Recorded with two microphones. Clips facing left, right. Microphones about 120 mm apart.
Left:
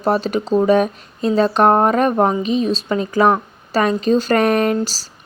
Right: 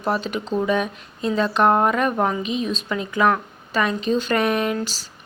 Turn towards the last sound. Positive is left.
turn(degrees=40)  # may be behind; listen again after turning